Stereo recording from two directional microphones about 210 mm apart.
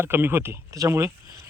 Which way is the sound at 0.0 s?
10° right (ahead or behind).